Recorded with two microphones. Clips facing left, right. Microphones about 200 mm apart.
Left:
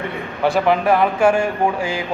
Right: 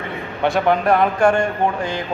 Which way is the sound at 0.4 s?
Centre (ahead or behind).